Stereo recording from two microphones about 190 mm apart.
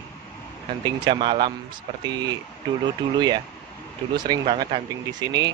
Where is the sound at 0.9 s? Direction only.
25° right (ahead or behind).